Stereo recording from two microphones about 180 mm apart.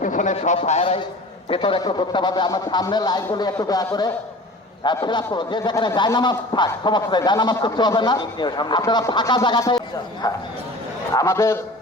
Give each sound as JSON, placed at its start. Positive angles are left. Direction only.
{"t": 0.0, "sound": "a man's voice", "side_deg": 45}